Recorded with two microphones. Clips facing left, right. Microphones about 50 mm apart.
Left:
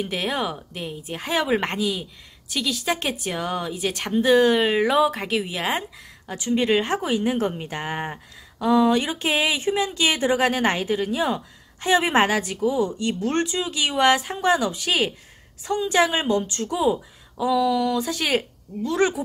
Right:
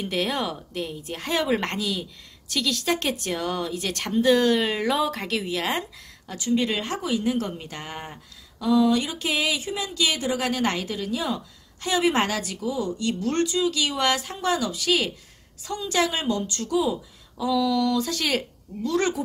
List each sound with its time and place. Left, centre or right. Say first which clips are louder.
0.0 s a woman's voice: left 1 dB; centre